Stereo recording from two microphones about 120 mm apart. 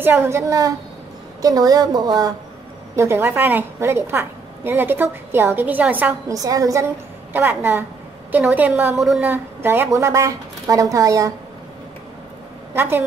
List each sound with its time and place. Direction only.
0.0 s a woman's voice: 20° right (ahead or behind)
3.0 s a woman's voice: 20° right (ahead or behind)
6.2 s a woman's voice: 30° right (ahead or behind)
7.3 s a woman's voice: 15° right (ahead or behind)
9.0 s a woman's voice: 5° right (ahead or behind)
9.3 s a woman's voice: 20° right (ahead or behind)
12.7 s a woman's voice: 20° right (ahead or behind)